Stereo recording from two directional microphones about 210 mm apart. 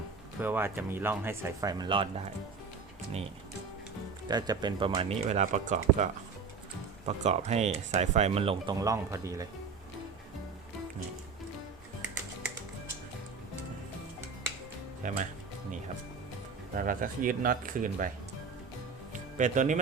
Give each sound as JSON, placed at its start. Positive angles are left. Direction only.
{"t": 0.4, "sound": "speech", "side_deg": -10}
{"t": 4.3, "sound": "speech", "side_deg": -20}
{"t": 15.0, "sound": "speech", "side_deg": -40}
{"t": 16.7, "sound": "speech", "side_deg": -40}
{"t": 19.4, "sound": "speech", "side_deg": -35}